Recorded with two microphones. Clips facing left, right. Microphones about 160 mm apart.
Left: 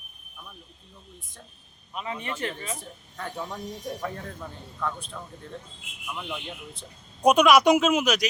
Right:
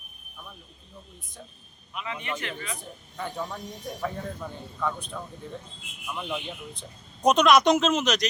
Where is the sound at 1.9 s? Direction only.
35° left (ahead or behind).